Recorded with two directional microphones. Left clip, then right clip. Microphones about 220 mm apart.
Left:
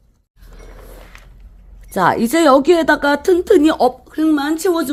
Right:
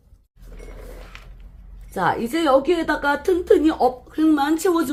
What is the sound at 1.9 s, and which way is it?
A woman's voice, 50° left (ahead or behind).